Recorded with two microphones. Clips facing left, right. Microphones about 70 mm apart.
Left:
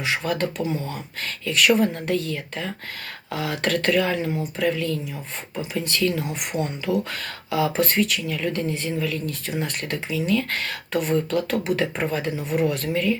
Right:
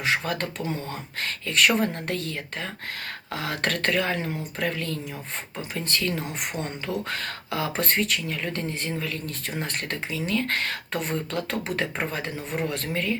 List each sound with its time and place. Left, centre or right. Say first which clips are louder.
0.3 s speech: left 4 dB; right